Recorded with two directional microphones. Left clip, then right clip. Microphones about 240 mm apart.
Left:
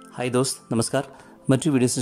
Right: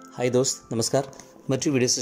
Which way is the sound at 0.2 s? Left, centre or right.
Centre.